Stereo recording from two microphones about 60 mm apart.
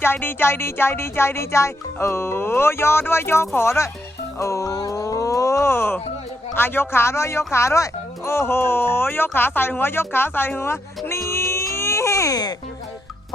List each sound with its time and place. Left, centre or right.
0.0 s speech: left
4.4 s a sound: left
5.7 s speech: left
11.1 s baby cry: left